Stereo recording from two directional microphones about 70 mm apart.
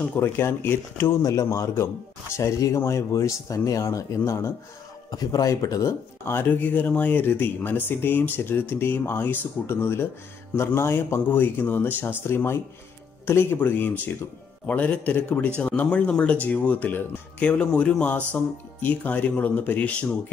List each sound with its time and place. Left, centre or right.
0.0 s speech: left
1.2 s speech: left
4.2 s speech: left
5.1 s speech: left
5.5 s speech: left
6.2 s speech: left